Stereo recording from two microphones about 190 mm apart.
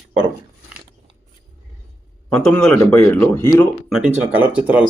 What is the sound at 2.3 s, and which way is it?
A man's voice, 5° left (ahead or behind).